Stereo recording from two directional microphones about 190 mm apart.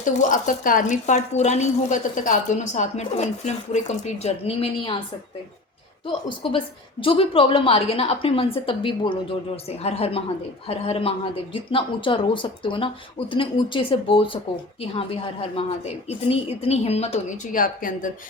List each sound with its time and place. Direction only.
0.0 s speech: 40° left (ahead or behind)
6.2 s a woman's voice: 25° left (ahead or behind); by 18.1 s 45° left (ahead or behind)